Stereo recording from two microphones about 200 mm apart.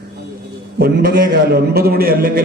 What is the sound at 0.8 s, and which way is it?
A man's voice, 50° right (ahead or behind).